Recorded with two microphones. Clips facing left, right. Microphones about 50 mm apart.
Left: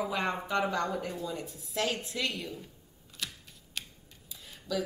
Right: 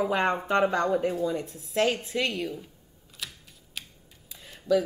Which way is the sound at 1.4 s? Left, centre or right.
Right.